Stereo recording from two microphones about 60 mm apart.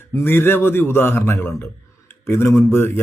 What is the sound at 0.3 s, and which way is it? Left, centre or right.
A man's voice, left.